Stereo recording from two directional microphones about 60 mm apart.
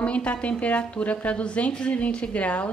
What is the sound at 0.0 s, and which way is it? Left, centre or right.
A woman's voice, left.